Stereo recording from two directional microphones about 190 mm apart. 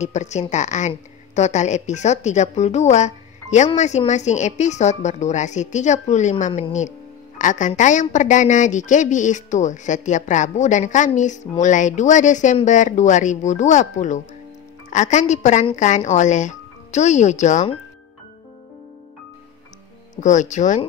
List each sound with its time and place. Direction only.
0.0 s a woman's voice: 35° left (ahead or behind)
20.2 s a woman's voice: 40° left (ahead or behind)